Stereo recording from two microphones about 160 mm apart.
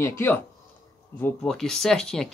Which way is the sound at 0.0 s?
15° left (ahead or behind).